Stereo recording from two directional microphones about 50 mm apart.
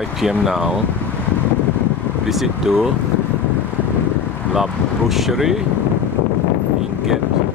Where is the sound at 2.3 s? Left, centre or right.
Centre.